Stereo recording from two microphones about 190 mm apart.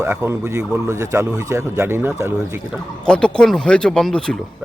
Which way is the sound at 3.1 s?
5° left (ahead or behind).